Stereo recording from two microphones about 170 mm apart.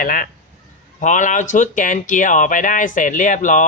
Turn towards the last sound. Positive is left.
turn(degrees=50)  # may be behind; listen again after turning